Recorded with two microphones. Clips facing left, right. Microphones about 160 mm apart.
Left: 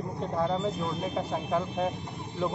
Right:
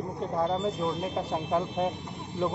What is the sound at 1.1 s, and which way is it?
Speech, 15° right (ahead or behind).